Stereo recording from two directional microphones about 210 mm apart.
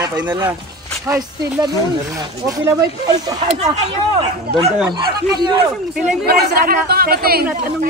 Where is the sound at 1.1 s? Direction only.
15° right (ahead or behind).